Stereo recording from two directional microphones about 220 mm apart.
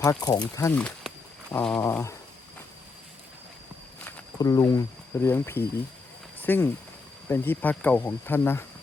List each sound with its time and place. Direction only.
0.0 s speech: 15° left (ahead or behind)
0.8 s a sound: 5° left (ahead or behind)
1.5 s speech: 5° left (ahead or behind)
4.0 s speech: 15° left (ahead or behind)